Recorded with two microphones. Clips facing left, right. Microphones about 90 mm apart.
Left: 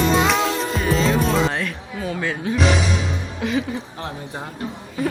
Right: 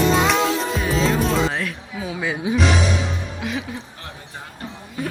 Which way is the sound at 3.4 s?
Centre (ahead or behind).